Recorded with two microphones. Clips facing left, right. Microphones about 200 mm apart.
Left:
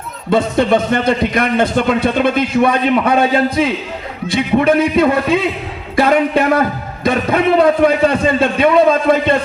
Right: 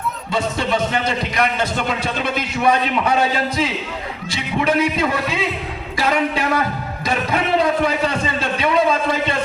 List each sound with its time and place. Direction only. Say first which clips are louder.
0.3 s a man's voice: left 9 dB; 55° left (ahead or behind)